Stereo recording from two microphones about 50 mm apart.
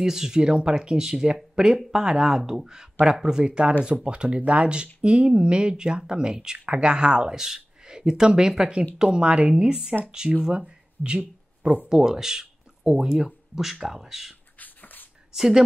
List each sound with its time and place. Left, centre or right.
0.0 s speech: centre
10.4 s a sound: centre
11.9 s speech: centre
14.6 s beatboxing: left
15.3 s speech: centre